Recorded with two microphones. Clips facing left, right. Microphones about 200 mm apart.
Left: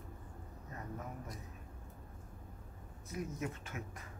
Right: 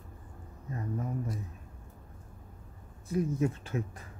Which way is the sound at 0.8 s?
30° right (ahead or behind).